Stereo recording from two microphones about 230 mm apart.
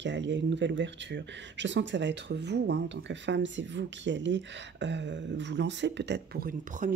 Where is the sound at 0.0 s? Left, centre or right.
Right.